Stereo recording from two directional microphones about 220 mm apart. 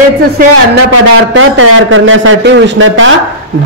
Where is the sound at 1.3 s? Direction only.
60° right (ahead or behind).